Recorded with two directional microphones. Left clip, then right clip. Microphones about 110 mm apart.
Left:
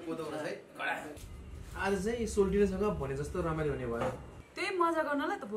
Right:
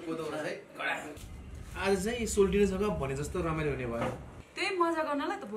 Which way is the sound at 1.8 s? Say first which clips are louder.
Right 2 dB; 15° right (ahead or behind).